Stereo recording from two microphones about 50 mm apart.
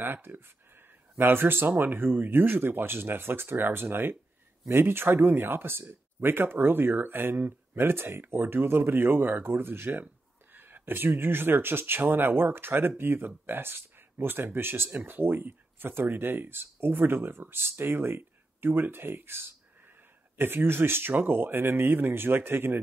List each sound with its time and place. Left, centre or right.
0.0 s speech: right